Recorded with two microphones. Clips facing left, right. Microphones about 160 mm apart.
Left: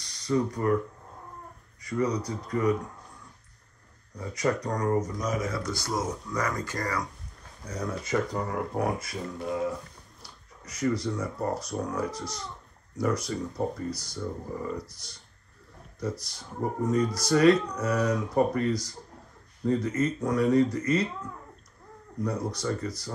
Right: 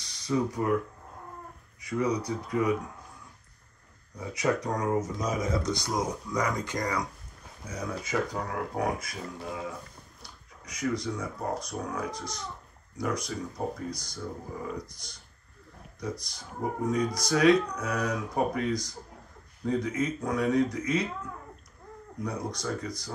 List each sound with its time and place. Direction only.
0.1 s speech: 5° right (ahead or behind)
1.8 s speech: centre (ahead or behind)
4.2 s speech: 5° right (ahead or behind)
5.4 s speech: 20° right (ahead or behind)
7.6 s speech: centre (ahead or behind)
16.0 s speech: 5° left (ahead or behind)
18.0 s speech: 5° right (ahead or behind)
18.7 s speech: 5° left (ahead or behind)
22.2 s speech: 5° left (ahead or behind)